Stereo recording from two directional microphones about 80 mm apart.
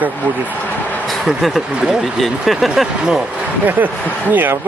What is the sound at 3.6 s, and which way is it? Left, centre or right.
Speech, right.